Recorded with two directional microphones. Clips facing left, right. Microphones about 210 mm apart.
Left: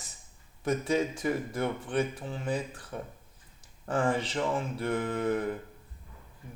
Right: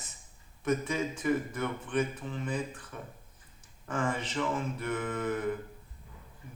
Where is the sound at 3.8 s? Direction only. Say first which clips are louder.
Left 4 dB; 35° left (ahead or behind).